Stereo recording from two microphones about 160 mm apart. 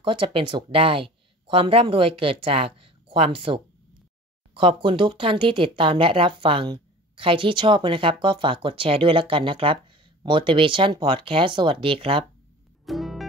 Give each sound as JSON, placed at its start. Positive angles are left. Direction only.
{"t": 0.0, "sound": "speech", "side_deg": -30}
{"t": 12.8, "sound": "music", "side_deg": 0}